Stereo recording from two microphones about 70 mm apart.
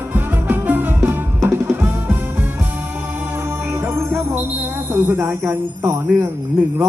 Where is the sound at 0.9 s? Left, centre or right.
Right.